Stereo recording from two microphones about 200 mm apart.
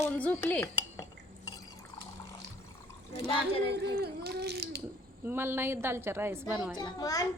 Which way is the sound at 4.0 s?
50° right (ahead or behind).